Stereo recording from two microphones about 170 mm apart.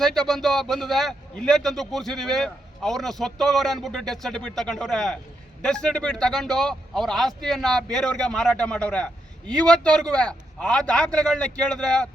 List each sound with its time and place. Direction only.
0.0 s a man's voice: centre (ahead or behind)